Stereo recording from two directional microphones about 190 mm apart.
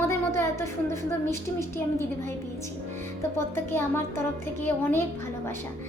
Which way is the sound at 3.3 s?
10° left (ahead or behind).